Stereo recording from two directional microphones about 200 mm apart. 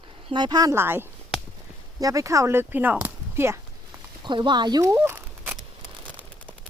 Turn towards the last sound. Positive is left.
turn(degrees=-10)  # may be behind; listen again after turning